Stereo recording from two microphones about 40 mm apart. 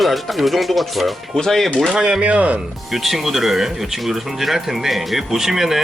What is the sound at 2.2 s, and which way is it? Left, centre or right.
Speech, right.